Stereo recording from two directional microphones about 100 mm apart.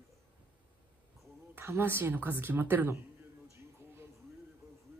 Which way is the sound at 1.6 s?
20° right (ahead or behind).